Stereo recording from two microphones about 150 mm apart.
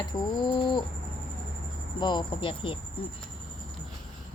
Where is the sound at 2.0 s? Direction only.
30° left (ahead or behind).